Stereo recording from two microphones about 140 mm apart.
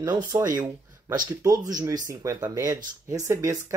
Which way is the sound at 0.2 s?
25° right (ahead or behind).